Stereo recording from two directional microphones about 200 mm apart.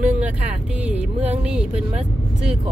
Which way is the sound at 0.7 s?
5° right (ahead or behind).